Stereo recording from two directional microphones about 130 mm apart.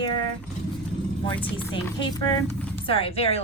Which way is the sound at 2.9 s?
45° left (ahead or behind).